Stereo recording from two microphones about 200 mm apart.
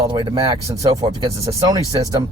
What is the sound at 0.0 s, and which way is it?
Speech, 25° right (ahead or behind).